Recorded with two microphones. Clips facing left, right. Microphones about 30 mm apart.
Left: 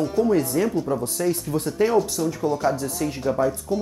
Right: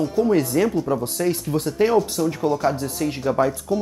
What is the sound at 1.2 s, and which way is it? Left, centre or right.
Speech, right.